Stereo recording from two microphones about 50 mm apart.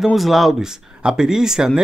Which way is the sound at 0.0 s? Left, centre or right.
Centre.